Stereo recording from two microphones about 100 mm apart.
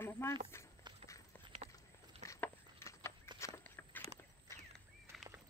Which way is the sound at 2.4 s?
25° left (ahead or behind).